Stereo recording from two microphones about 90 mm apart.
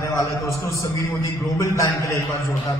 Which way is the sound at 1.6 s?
35° left (ahead or behind).